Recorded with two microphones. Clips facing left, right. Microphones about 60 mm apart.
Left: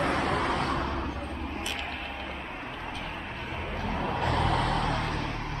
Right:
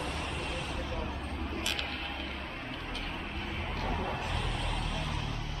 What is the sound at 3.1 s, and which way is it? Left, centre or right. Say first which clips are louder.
Vehicle: left 2 dB; left.